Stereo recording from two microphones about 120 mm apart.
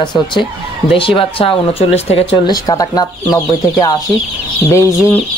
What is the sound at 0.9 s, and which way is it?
Speech, 50° left (ahead or behind).